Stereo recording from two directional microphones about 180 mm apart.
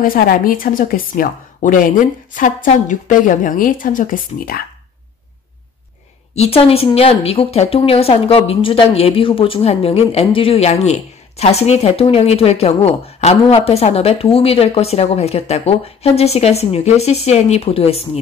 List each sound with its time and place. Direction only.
0.0 s speech: 55° left (ahead or behind)
6.3 s speech: 35° left (ahead or behind)